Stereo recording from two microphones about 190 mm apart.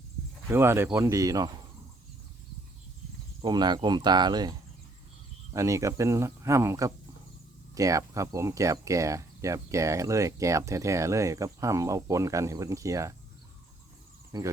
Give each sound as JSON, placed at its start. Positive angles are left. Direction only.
{"t": 0.4, "sound": "speech", "side_deg": -10}
{"t": 3.4, "sound": "speech", "side_deg": -20}
{"t": 5.5, "sound": "speech", "side_deg": -15}
{"t": 14.3, "sound": "speech", "side_deg": -20}